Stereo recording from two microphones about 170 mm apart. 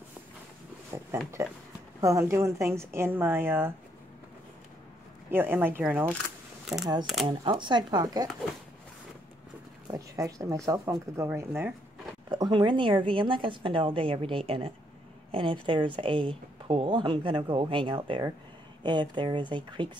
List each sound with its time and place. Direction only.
0.9 s a woman's voice: 15° right (ahead or behind)
5.3 s a woman's voice: 10° right (ahead or behind)
7.2 s a woman's voice: 30° right (ahead or behind)
9.8 s a woman's voice: 20° right (ahead or behind)
12.3 s a woman's voice: 25° right (ahead or behind)